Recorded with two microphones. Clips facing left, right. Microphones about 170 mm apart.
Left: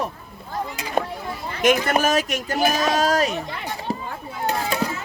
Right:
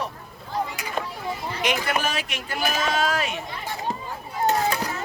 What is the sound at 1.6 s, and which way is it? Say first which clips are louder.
Speech: left 7 dB; 45° left (ahead or behind).